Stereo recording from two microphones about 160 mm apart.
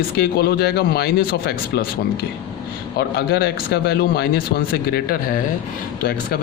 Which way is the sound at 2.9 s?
85° left.